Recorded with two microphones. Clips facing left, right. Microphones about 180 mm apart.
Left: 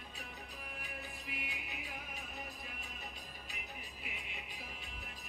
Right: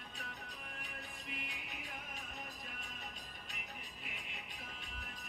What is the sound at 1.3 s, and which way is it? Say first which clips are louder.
Music: even; 5° left (ahead or behind).